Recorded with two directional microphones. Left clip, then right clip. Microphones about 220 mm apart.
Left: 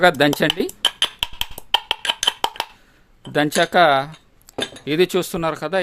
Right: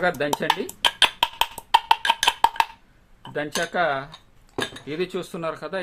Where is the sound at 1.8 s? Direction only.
5° left (ahead or behind).